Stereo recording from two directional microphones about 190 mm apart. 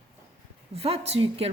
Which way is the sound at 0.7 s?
30° right (ahead or behind).